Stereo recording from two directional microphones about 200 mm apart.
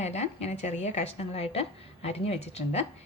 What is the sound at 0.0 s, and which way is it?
A woman's voice, 35° left (ahead or behind).